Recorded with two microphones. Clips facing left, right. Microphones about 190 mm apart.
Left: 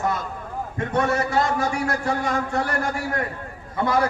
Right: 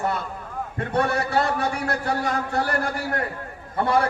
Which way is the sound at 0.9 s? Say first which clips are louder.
Left 1 dB; 35° right (ahead or behind).